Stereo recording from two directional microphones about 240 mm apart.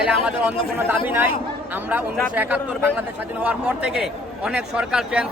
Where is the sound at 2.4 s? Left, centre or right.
Centre.